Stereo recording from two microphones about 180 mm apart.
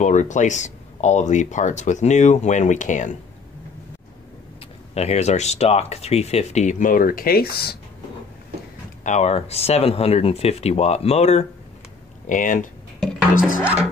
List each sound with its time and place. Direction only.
0.0 s speech: 40° left (ahead or behind)
4.9 s speech: 35° left (ahead or behind); by 7.7 s 60° left (ahead or behind)
9.0 s speech: 40° left (ahead or behind)